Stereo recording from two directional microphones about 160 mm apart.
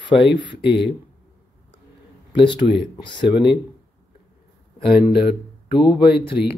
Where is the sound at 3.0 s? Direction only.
30° left (ahead or behind).